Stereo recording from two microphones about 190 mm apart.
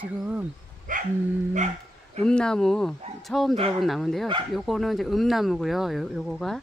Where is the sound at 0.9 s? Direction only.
45° right (ahead or behind).